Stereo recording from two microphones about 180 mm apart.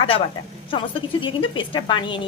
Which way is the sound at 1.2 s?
25° left (ahead or behind).